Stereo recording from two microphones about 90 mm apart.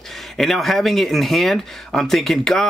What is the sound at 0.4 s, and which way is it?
Speech, centre (ahead or behind).